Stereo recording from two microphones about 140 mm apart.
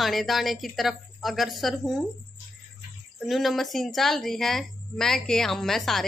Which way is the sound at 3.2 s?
Centre (ahead or behind).